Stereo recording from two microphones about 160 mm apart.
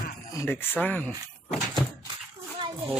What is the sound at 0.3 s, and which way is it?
Speech, 15° left (ahead or behind).